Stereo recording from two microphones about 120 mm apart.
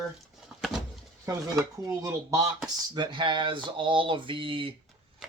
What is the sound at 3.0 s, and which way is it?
Speech, 40° right (ahead or behind).